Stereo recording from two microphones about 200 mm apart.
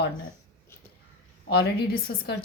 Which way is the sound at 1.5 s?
55° left (ahead or behind).